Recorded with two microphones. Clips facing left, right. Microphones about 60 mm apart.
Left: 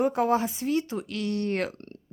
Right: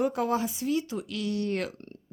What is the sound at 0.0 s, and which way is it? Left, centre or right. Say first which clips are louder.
Speech: left 3 dB; left.